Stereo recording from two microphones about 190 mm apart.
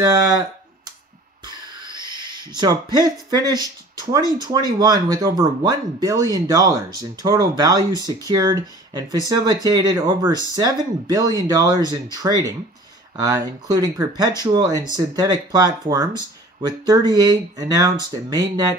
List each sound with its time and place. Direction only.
0.0 s speech: 20° right (ahead or behind)
1.4 s a sound: 20° right (ahead or behind)
4.4 s speech: 20° right (ahead or behind)